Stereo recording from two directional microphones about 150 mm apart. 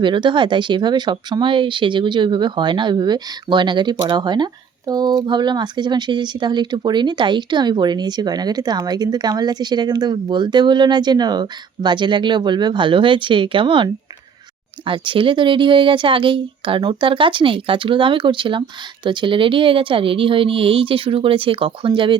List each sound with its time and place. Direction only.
0.0 s a woman's voice: 30° right (ahead or behind)